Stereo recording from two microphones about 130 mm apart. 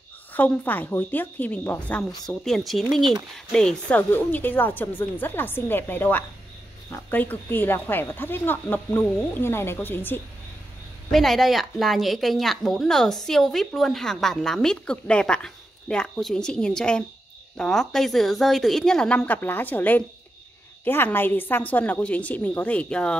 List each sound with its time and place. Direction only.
0.3 s speech: 15° left (ahead or behind)
2.2 s a woman's voice: centre (ahead or behind)
11.1 s a woman's voice: centre (ahead or behind)